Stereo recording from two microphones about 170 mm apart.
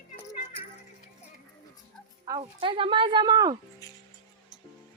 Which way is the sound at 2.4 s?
30° right (ahead or behind).